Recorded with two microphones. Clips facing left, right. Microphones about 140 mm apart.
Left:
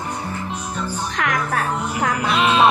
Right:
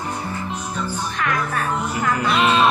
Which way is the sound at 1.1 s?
90° left.